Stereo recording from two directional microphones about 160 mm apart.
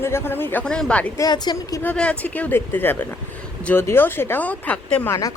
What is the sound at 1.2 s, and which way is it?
Speech, 25° left (ahead or behind).